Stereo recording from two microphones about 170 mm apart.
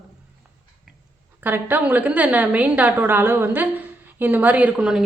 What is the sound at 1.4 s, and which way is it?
A woman's voice, 10° right (ahead or behind).